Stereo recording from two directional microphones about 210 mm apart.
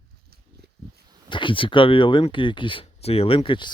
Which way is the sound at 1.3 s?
25° left (ahead or behind).